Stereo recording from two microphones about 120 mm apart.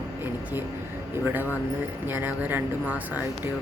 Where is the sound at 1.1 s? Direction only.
15° right (ahead or behind).